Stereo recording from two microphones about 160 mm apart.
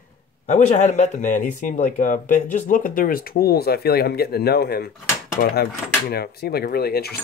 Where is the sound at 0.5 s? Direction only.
45° left (ahead or behind).